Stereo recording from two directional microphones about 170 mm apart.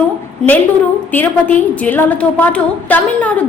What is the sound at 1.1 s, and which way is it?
A woman's voice, 10° left (ahead or behind).